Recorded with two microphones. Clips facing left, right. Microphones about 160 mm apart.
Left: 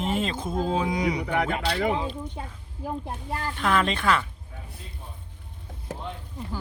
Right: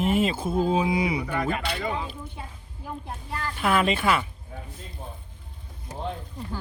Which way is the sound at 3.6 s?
10° right (ahead or behind).